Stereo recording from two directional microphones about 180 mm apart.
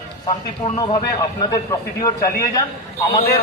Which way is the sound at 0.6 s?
30° left (ahead or behind).